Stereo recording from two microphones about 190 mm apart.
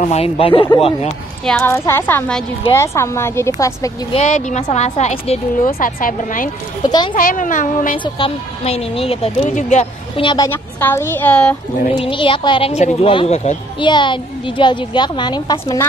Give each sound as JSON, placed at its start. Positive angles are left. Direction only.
{"t": 0.0, "sound": "speech", "side_deg": 35}
{"t": 1.4, "sound": "a woman's voice", "side_deg": 10}
{"t": 4.1, "sound": "speech", "side_deg": 40}
{"t": 5.7, "sound": "a woman's voice", "side_deg": 50}
{"t": 6.8, "sound": "speech", "side_deg": 20}
{"t": 7.2, "sound": "a woman's voice", "side_deg": 45}
{"t": 8.0, "sound": "speech", "side_deg": 30}
{"t": 10.2, "sound": "speech", "side_deg": 20}
{"t": 10.5, "sound": "a woman's voice", "side_deg": 10}
{"t": 11.9, "sound": "speech", "side_deg": 25}